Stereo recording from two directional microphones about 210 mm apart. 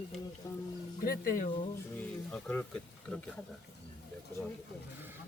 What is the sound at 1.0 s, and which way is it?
Speech, 40° left (ahead or behind).